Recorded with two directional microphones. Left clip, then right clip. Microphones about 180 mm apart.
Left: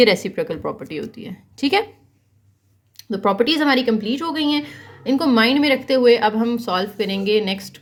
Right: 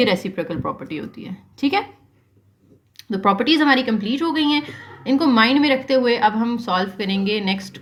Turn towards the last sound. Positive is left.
turn(degrees=30)  # may be behind; listen again after turning